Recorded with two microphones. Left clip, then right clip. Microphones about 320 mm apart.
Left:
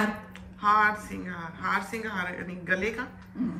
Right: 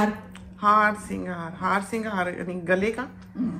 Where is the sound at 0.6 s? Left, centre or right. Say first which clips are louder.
Right 3 dB; centre.